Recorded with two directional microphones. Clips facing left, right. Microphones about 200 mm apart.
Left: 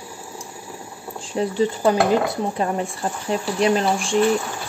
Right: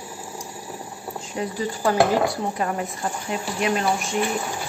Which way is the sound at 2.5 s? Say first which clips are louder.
Left 3 dB; 30° left (ahead or behind).